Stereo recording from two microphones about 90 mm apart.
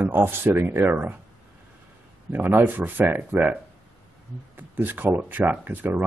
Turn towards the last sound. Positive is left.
turn(degrees=-20)  # may be behind; listen again after turning